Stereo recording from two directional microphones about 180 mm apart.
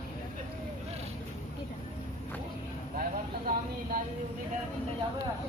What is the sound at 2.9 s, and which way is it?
Vehicle, 50° right (ahead or behind).